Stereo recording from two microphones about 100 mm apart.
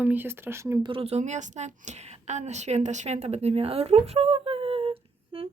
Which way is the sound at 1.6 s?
90° right.